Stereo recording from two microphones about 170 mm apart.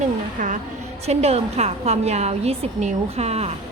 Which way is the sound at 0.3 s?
45° right (ahead or behind).